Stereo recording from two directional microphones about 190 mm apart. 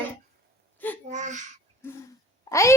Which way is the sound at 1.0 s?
40° right (ahead or behind).